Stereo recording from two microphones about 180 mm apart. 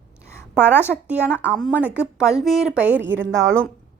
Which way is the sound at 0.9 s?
Centre (ahead or behind).